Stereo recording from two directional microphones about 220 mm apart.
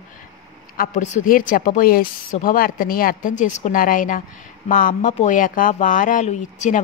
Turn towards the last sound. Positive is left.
turn(degrees=35)  # may be behind; listen again after turning